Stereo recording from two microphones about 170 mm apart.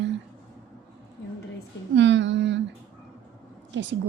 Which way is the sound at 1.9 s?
90° right.